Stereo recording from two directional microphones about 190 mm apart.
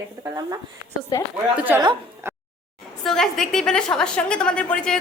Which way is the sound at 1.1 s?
15° left (ahead or behind).